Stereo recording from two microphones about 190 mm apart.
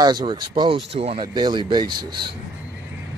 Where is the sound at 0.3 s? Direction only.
25° right (ahead or behind).